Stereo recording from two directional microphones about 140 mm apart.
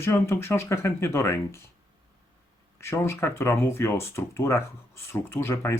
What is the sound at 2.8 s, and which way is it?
Speech, 20° left (ahead or behind).